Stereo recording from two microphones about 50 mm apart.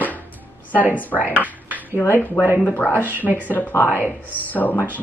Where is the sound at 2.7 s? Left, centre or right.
Left.